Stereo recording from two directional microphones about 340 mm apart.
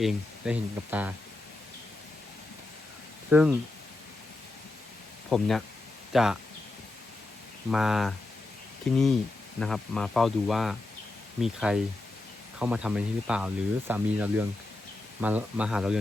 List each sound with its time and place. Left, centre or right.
0.0 s speech: centre
3.2 s speech: centre
5.3 s speech: centre
7.7 s speech: centre